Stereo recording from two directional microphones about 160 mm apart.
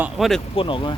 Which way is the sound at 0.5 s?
30° left (ahead or behind).